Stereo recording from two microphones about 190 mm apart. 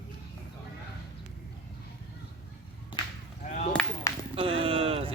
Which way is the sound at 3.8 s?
5° left (ahead or behind).